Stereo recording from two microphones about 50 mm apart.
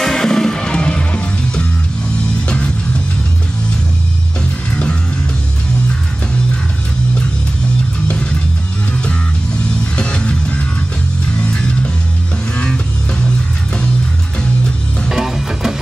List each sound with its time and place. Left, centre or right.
0.0 s music: centre
9.9 s music: left
15.0 s music: centre